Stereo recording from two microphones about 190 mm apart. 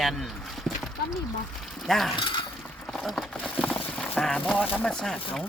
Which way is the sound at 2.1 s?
25° left (ahead or behind).